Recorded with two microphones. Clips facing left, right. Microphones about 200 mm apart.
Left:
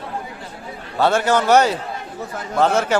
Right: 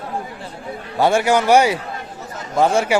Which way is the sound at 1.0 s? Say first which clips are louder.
Right 1 dB; 10° right (ahead or behind).